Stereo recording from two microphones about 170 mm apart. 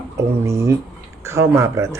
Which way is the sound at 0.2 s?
15° right (ahead or behind).